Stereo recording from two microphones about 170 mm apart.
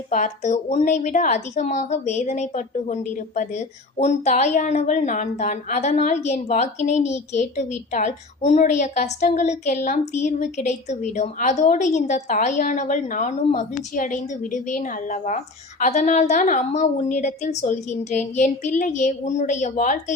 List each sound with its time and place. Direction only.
0.1 s a woman's voice: 45° left (ahead or behind)